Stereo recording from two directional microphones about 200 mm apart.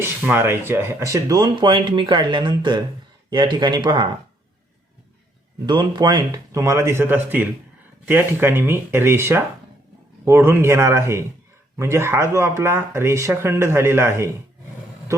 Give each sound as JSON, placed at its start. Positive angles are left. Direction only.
{"t": 0.0, "sound": "speech", "side_deg": -10}
{"t": 5.6, "sound": "speech", "side_deg": -20}